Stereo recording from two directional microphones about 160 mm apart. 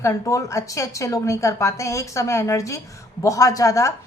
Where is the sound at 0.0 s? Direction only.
20° left (ahead or behind).